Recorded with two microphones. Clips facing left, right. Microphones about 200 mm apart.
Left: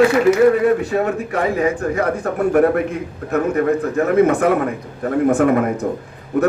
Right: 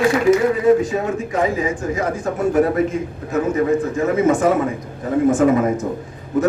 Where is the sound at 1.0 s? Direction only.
60° left (ahead or behind).